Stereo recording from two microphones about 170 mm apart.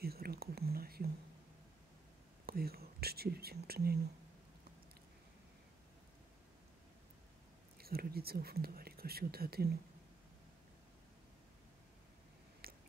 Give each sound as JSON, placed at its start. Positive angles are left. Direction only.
{"t": 0.0, "sound": "whispering", "side_deg": -65}
{"t": 2.4, "sound": "whispering", "side_deg": -65}
{"t": 7.7, "sound": "speech", "side_deg": -65}
{"t": 12.6, "sound": "biting", "side_deg": -60}